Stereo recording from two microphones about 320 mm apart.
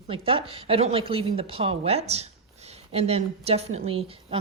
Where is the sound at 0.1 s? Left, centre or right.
Centre.